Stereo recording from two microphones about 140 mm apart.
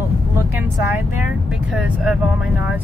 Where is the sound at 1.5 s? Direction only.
5° right (ahead or behind).